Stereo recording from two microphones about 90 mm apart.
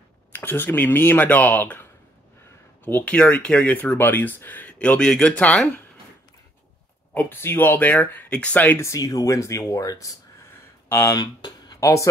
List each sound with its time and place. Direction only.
0.3 s speech: 25° left (ahead or behind)
7.2 s speech: 25° left (ahead or behind)
8.7 s speech: 30° left (ahead or behind)
10.9 s speech: 25° left (ahead or behind)
11.1 s speech: 50° left (ahead or behind)
11.8 s speech: 35° left (ahead or behind)